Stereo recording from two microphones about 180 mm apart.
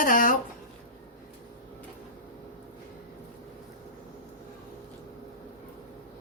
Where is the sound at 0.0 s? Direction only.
50° left (ahead or behind).